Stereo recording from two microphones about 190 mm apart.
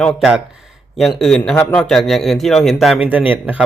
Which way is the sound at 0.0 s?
Centre (ahead or behind).